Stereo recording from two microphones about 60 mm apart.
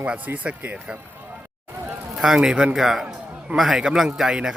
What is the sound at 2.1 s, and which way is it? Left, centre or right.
A man's voice, centre.